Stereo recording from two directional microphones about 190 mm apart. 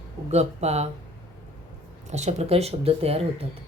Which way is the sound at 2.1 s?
35° right (ahead or behind).